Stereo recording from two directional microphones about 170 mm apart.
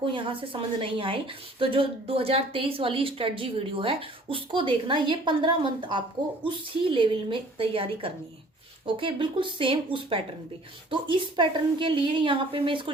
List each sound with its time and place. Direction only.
0.0 s a woman's voice: 30° right (ahead or behind)